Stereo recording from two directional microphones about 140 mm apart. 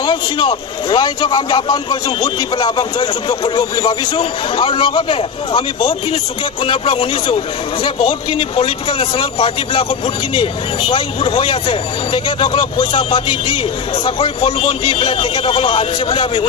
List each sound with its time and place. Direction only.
0.0 s speech: 35° left (ahead or behind)